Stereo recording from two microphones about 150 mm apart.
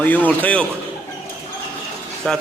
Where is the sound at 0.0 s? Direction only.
10° left (ahead or behind).